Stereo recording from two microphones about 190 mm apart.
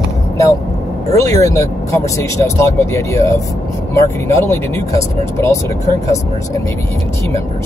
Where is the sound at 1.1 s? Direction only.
15° left (ahead or behind).